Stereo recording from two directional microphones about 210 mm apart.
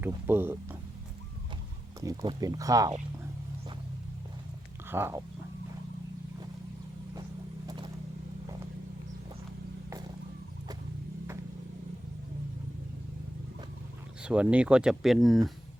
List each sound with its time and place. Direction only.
0.0 s speech: 10° right (ahead or behind)
2.0 s speech: 15° right (ahead or behind)
4.9 s speech: 10° right (ahead or behind)
14.2 s speech: 5° right (ahead or behind)